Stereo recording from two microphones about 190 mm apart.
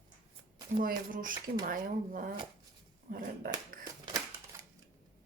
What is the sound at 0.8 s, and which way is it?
Speech, 45° right (ahead or behind).